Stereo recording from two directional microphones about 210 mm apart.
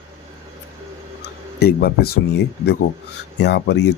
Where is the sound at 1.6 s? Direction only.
45° left (ahead or behind).